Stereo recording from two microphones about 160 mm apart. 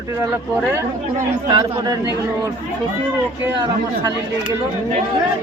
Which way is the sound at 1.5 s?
20° right (ahead or behind).